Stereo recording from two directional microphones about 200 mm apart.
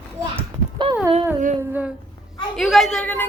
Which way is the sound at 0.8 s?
25° right (ahead or behind).